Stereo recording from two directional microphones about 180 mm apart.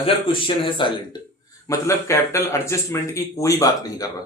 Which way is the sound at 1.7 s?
15° left (ahead or behind).